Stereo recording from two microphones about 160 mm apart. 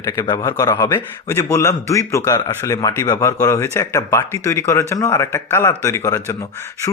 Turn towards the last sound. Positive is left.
turn(degrees=20)  # may be behind; listen again after turning